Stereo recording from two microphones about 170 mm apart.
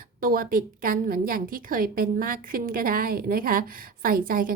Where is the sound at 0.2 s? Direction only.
55° right (ahead or behind).